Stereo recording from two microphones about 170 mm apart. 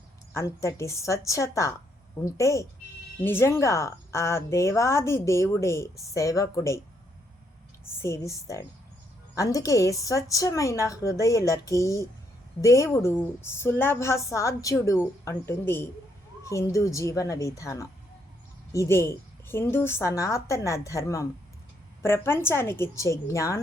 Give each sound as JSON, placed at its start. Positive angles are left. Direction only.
{"t": 0.3, "sound": "a woman's voice", "side_deg": 15}
{"t": 8.0, "sound": "a woman's voice", "side_deg": 15}